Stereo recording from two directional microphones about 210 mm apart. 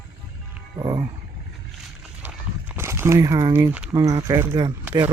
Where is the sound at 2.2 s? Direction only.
10° right (ahead or behind).